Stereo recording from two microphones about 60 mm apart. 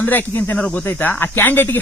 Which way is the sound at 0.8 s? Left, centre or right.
Left.